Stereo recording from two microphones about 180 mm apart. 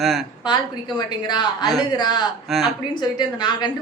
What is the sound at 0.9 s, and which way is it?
A woman's voice, 25° left (ahead or behind).